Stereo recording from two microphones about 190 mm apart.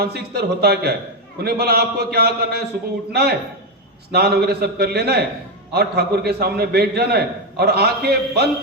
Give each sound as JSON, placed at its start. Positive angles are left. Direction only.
{"t": 0.0, "sound": "a man's voice", "side_deg": -55}